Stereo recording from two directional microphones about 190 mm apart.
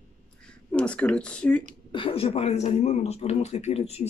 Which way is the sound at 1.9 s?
30° left (ahead or behind).